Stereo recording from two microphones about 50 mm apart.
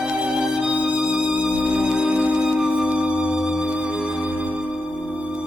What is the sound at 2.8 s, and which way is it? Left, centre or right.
Music, right.